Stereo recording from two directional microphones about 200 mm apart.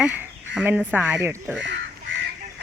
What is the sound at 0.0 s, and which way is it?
Speech, 5° right (ahead or behind).